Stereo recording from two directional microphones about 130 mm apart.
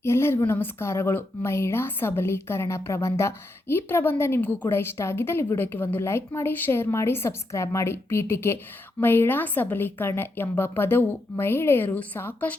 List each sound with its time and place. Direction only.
0.0 s a woman's voice: 20° left (ahead or behind)